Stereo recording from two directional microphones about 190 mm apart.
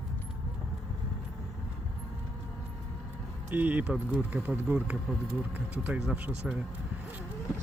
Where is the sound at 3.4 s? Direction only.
10° right (ahead or behind).